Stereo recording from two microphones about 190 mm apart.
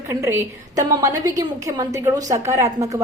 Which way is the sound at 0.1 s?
15° right (ahead or behind).